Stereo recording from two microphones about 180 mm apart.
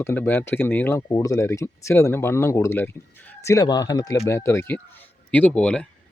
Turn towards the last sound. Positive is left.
turn(degrees=5)  # may be behind; listen again after turning